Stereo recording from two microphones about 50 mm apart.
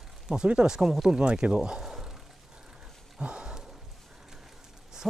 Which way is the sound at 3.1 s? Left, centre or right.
Centre.